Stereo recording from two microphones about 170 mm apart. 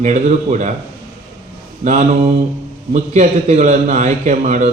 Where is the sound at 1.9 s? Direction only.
45° right (ahead or behind).